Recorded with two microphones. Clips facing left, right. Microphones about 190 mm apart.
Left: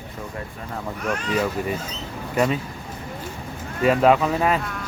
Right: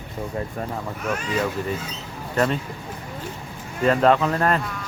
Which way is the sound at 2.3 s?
5° left (ahead or behind).